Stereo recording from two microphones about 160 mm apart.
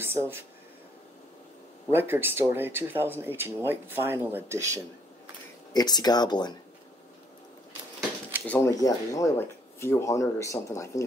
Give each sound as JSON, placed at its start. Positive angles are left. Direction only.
{"t": 0.0, "sound": "speech", "side_deg": -15}
{"t": 1.9, "sound": "speech", "side_deg": -15}
{"t": 5.7, "sound": "speech", "side_deg": 25}
{"t": 8.5, "sound": "speech", "side_deg": 10}
{"t": 8.7, "sound": "speech", "side_deg": 20}